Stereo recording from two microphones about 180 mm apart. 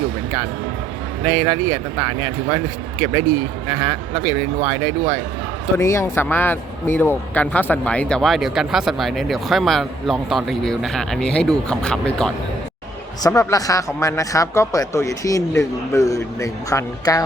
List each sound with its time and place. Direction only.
1.2 s speech: 10° right (ahead or behind)
4.8 s speech: 10° right (ahead or behind)
5.7 s speech: 15° left (ahead or behind)
13.2 s speech: 20° left (ahead or behind)